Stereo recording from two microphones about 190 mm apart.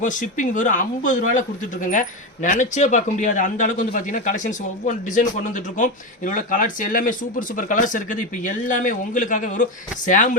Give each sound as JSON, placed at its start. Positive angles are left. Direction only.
{"t": 0.0, "sound": "speech", "side_deg": 40}